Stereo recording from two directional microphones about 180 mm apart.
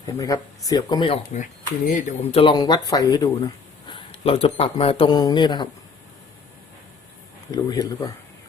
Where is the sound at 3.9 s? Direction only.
30° left (ahead or behind).